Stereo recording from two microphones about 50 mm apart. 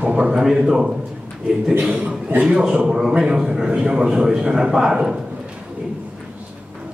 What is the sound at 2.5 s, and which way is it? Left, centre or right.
A man's voice, centre.